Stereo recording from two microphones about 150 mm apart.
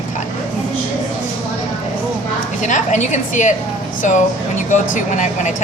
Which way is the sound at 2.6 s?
55° left (ahead or behind).